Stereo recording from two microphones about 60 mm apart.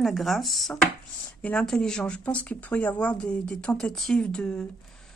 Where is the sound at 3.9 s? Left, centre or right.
Centre.